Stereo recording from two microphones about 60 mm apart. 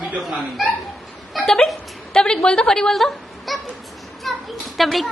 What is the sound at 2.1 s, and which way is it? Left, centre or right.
A woman's voice, centre.